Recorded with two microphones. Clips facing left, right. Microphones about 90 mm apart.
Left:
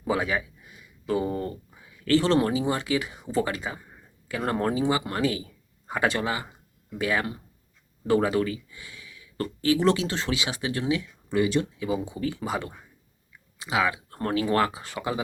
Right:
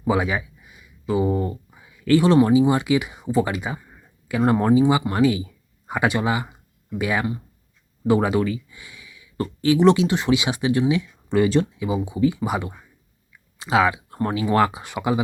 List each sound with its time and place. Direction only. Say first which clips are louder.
0.0 s speech: right 4 dB; 15° right (ahead or behind)
11.3 s speech: right 5 dB; 35° right (ahead or behind)
11.8 s speech: right 7 dB; 15° right (ahead or behind)
13.6 s speech: right 6 dB; 30° right (ahead or behind)